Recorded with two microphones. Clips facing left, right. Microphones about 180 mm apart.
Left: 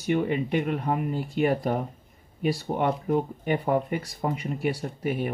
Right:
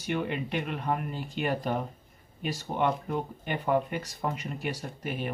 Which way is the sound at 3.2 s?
5° left (ahead or behind).